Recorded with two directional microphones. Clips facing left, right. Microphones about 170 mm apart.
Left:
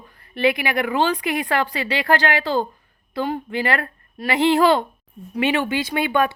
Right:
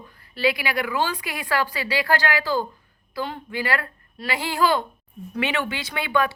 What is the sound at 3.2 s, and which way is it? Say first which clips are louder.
Speech: left 6 dB; 15° left (ahead or behind).